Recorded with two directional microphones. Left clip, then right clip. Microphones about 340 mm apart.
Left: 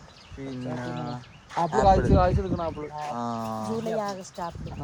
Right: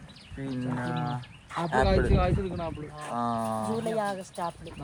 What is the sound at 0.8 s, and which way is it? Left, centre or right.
Speech, centre.